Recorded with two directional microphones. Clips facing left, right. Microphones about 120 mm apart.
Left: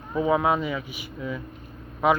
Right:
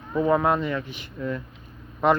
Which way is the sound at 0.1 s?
5° left (ahead or behind).